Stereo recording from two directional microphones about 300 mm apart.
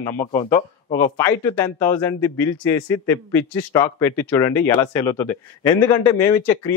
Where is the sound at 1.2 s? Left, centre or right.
Centre.